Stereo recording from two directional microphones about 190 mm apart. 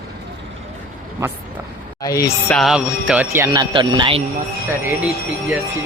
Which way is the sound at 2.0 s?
15° left (ahead or behind).